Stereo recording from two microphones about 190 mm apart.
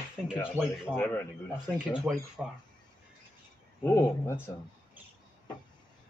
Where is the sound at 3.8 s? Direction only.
15° left (ahead or behind).